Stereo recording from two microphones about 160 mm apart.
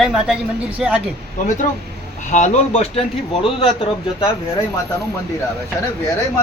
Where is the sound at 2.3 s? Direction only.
45° left (ahead or behind).